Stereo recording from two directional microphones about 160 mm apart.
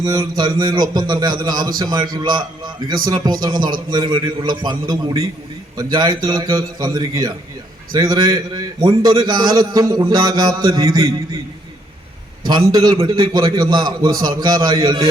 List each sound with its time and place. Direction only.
0.0 s a man's voice: 25° right (ahead or behind)
12.5 s a man's voice: 25° right (ahead or behind)